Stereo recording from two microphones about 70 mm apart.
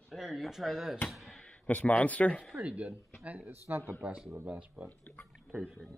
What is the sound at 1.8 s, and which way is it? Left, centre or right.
Speech, left.